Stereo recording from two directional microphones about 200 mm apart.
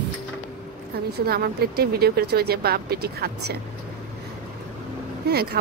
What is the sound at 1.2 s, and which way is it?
A woman's voice, 50° right (ahead or behind).